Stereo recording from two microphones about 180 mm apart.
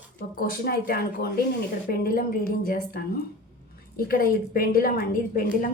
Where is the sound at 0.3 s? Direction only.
55° left (ahead or behind).